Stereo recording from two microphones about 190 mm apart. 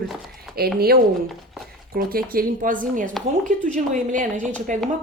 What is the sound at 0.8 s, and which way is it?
A woman's voice, 55° right (ahead or behind).